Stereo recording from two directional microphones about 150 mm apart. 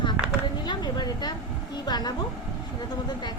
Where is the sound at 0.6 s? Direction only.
30° left (ahead or behind).